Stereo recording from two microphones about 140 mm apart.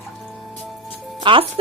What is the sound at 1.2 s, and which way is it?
Speech, 40° right (ahead or behind).